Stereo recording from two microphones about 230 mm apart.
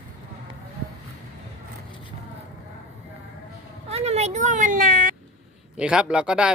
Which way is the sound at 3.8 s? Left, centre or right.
Right.